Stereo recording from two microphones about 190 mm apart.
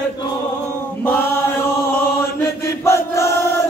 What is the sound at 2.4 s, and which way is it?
Chant, 15° left (ahead or behind).